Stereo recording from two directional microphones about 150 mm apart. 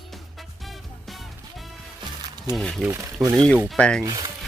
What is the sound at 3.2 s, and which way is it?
Speech, 25° right (ahead or behind).